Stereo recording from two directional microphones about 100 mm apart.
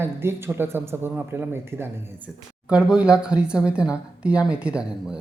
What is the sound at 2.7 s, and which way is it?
A man's voice, 10° right (ahead or behind).